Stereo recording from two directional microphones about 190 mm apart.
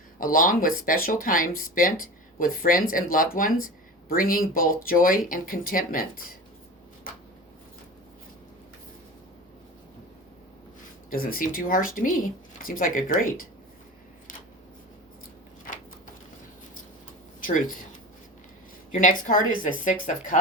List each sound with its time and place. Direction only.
0.2 s speech: 45° left (ahead or behind)
11.1 s speech: 50° left (ahead or behind)
17.4 s speech: 45° left (ahead or behind)
18.9 s speech: 45° left (ahead or behind)